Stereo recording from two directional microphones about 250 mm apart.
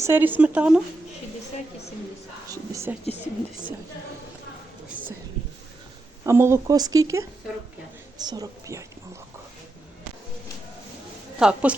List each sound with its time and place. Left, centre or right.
0.0 s speech: centre
2.5 s speech: centre
3.0 s speech: left
6.2 s speech: centre
11.3 s a woman's voice: centre